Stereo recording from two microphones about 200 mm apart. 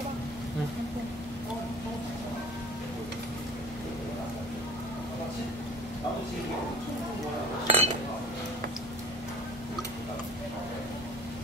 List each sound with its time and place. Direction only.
7.6 s dishes: 30° right (ahead or behind)